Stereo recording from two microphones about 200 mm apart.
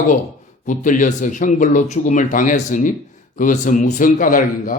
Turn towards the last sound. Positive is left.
turn(degrees=45)  # may be behind; listen again after turning